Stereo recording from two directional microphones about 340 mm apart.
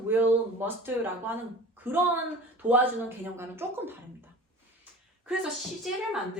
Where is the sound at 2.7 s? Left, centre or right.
Centre.